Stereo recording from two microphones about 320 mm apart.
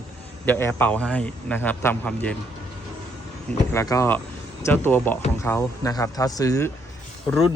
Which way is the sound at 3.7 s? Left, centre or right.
Centre.